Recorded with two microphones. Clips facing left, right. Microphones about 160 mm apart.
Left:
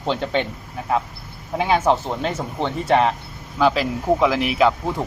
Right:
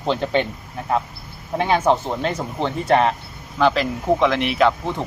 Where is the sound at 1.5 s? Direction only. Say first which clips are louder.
Even; centre (ahead or behind).